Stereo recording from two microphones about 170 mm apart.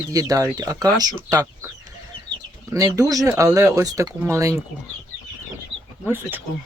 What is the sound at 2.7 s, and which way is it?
Speech, 20° right (ahead or behind).